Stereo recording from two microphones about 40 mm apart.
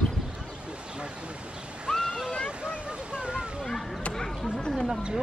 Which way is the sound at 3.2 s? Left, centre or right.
Right.